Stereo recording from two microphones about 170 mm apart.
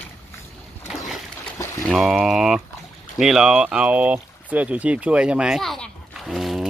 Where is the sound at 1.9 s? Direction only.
Centre (ahead or behind).